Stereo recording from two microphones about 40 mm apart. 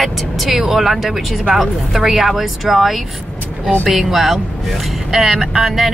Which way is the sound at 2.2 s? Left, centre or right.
Centre.